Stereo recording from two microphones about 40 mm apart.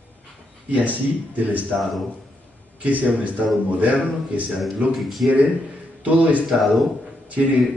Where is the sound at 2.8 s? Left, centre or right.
Right.